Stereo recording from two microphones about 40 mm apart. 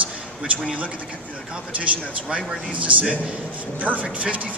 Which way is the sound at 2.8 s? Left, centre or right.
Right.